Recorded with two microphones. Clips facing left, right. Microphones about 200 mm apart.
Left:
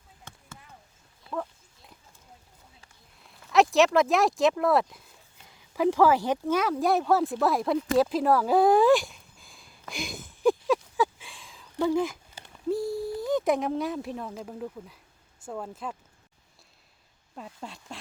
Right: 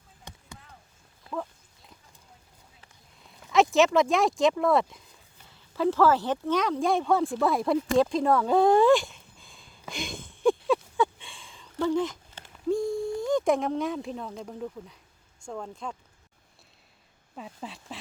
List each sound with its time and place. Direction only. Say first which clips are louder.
0.3 s a sound: right 2 dB; 15° right (ahead or behind)
3.2 s speech: left 1 dB; centre (ahead or behind)
5.5 s speech: left 1 dB; 15° left (ahead or behind)
10.7 s a sound: even; 5° left (ahead or behind)
15.4 s speech: left 1 dB; 5° left (ahead or behind)
17.3 s speech: right 1 dB; centre (ahead or behind)